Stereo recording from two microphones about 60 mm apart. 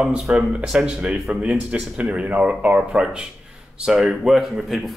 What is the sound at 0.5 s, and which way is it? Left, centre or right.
A man's voice, centre.